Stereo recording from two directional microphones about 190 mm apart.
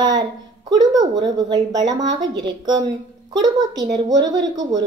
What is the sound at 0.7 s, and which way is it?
A woman's voice, 20° right (ahead or behind).